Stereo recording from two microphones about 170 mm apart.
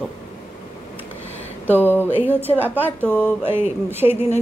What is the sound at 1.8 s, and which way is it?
Speech, 10° left (ahead or behind).